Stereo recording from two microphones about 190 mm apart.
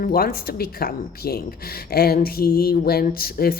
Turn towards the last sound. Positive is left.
turn(degrees=50)  # may be behind; listen again after turning